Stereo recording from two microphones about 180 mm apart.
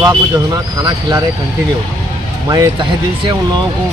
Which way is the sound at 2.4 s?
20° right (ahead or behind).